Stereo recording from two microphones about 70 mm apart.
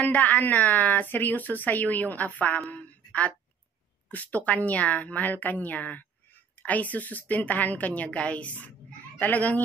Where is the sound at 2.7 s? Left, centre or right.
Left.